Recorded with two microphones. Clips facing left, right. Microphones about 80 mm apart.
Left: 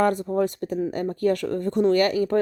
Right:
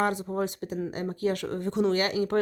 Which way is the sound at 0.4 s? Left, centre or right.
Left.